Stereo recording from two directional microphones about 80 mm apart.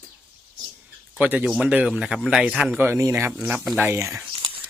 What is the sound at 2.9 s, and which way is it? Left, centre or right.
Speech, right.